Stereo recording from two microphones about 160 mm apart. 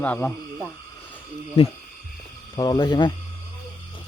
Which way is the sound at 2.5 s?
25° left (ahead or behind).